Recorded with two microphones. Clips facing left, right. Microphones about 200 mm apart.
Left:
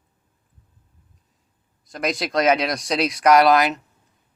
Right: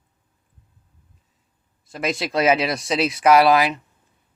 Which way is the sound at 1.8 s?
Centre (ahead or behind).